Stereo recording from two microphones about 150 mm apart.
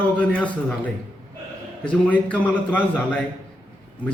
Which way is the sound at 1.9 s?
10° left (ahead or behind).